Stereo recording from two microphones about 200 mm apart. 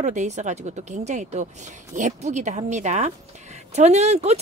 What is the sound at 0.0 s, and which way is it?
Speech, 35° right (ahead or behind).